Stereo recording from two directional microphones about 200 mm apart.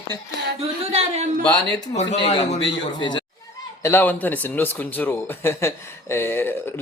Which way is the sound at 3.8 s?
10° left (ahead or behind).